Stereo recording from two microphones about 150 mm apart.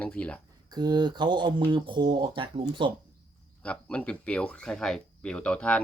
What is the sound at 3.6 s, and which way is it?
Speech, 10° left (ahead or behind).